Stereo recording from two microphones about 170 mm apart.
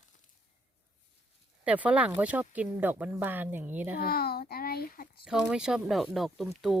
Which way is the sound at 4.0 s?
65° left (ahead or behind).